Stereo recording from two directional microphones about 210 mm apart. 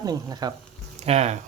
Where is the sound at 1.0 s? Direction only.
30° right (ahead or behind).